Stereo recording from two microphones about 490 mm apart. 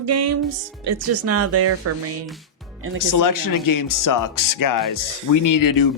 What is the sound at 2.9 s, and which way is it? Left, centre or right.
Speech, left.